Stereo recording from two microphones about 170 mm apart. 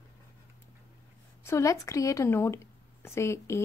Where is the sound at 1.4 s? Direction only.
15° left (ahead or behind).